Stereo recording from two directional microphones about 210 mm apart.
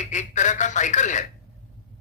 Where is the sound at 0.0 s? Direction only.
35° left (ahead or behind).